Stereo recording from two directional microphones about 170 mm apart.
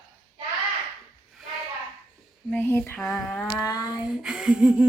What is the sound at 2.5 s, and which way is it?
Speech, 10° left (ahead or behind).